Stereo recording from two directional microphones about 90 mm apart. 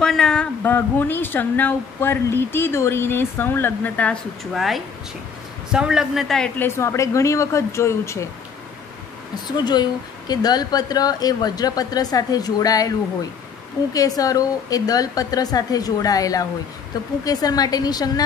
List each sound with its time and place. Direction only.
0.0 s a sound: 5° left (ahead or behind)
0.7 s speech: 25° left (ahead or behind)
4.6 s a man's voice: centre (ahead or behind)
6.6 s a woman's voice: 30° left (ahead or behind)
9.7 s speech: 50° left (ahead or behind)
13.9 s speech: 40° left (ahead or behind)